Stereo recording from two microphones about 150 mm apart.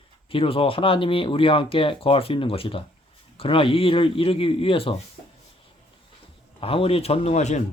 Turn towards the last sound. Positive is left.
turn(degrees=50)  # may be behind; listen again after turning